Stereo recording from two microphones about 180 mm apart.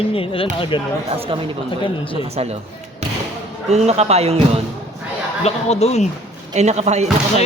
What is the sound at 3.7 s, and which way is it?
Speech, 35° right (ahead or behind).